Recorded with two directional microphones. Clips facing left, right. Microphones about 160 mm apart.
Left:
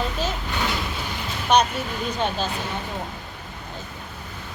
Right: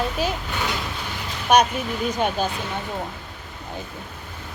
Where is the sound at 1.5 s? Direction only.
10° right (ahead or behind).